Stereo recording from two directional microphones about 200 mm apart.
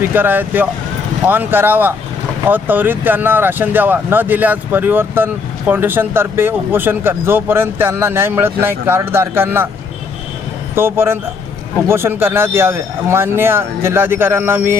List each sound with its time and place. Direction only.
0.0 s speech: 10° right (ahead or behind)
10.8 s speech: 10° right (ahead or behind)